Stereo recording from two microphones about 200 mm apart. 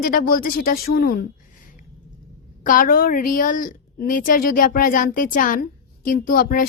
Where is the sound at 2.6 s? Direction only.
45° left (ahead or behind).